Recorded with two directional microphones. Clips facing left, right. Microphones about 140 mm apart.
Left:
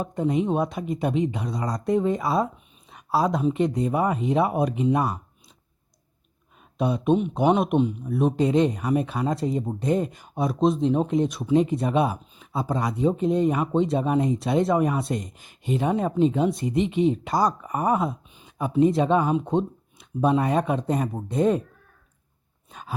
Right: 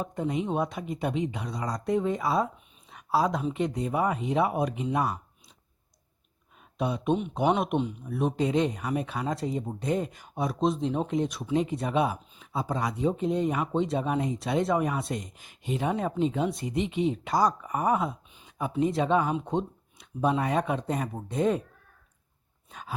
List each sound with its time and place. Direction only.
0.0 s a man's voice: 35° left (ahead or behind)
6.7 s a man's voice: 35° left (ahead or behind)
22.7 s dog: 35° left (ahead or behind)